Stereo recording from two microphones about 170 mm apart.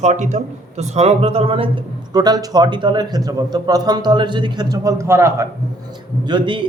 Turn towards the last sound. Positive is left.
turn(degrees=-30)  # may be behind; listen again after turning